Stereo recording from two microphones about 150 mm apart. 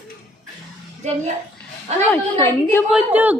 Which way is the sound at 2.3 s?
15° left (ahead or behind).